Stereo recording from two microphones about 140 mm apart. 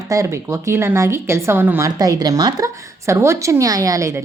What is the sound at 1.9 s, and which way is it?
A woman's voice, 25° right (ahead or behind).